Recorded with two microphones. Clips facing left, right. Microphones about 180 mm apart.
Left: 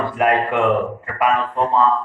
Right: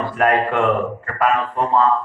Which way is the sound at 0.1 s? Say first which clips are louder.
Right 2 dB; 15° left (ahead or behind).